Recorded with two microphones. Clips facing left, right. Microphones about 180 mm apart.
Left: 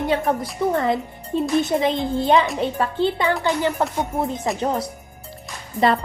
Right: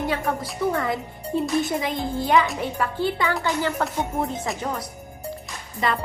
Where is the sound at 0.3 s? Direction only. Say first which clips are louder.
Left 3 dB; 20° left (ahead or behind).